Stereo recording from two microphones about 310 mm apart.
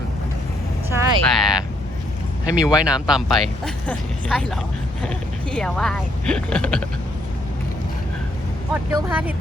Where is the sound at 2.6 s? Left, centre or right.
Centre.